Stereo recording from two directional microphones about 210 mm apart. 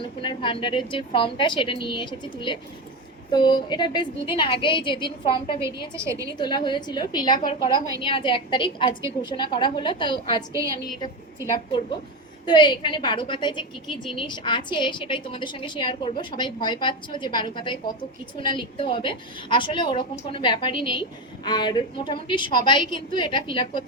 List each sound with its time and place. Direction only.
0.0 s a woman's voice: 25° left (ahead or behind)
5.9 s a woman's voice: 15° right (ahead or behind)
6.3 s a woman's voice: 20° left (ahead or behind)
11.4 s a woman's voice: 15° right (ahead or behind)
12.5 s a woman's voice: 20° left (ahead or behind)
13.8 s speech: centre (ahead or behind)
14.2 s a woman's voice: 20° left (ahead or behind)